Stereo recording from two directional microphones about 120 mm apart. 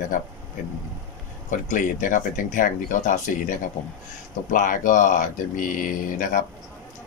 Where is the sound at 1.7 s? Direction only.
90° left.